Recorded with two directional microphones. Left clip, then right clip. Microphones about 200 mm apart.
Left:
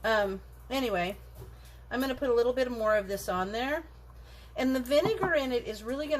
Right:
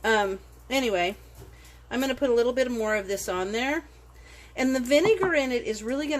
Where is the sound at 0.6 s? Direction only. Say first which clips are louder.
Right 5 dB; 45° right (ahead or behind).